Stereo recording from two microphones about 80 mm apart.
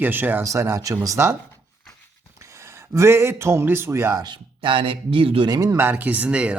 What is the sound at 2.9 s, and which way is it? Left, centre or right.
A man's voice, right.